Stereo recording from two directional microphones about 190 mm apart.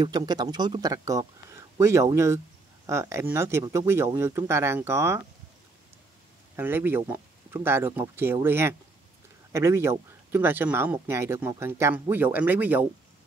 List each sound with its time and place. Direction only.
0.0 s speech: 20° right (ahead or behind)
6.5 s speech: 10° right (ahead or behind)